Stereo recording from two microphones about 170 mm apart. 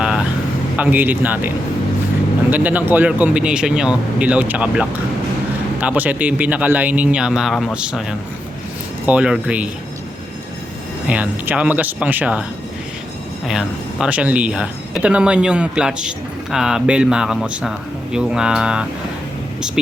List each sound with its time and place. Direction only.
0.0 s vehicle: 5° right (ahead or behind)
0.8 s speech: 10° right (ahead or behind)
9.0 s speech: 5° right (ahead or behind)
11.1 s speech: 10° right (ahead or behind)
13.5 s speech: 5° right (ahead or behind)